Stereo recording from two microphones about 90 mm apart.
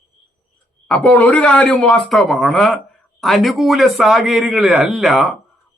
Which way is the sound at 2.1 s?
Centre (ahead or behind).